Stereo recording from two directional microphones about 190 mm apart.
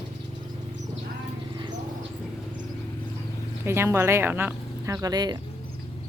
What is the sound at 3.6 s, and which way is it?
Speech, 15° right (ahead or behind).